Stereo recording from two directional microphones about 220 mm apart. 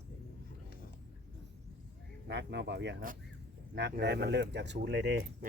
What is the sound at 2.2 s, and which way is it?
Speech, 50° right (ahead or behind).